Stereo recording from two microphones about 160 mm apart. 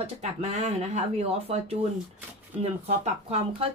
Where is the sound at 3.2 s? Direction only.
40° right (ahead or behind).